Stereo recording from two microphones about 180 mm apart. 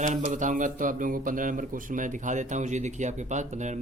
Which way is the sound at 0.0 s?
45° right (ahead or behind).